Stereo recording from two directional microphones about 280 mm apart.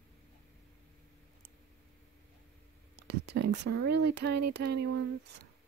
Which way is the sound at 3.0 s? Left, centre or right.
Right.